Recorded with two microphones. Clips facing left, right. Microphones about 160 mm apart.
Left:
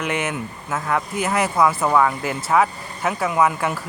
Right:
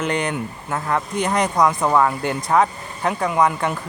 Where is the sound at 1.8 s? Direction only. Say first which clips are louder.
Right 1 dB; 5° right (ahead or behind).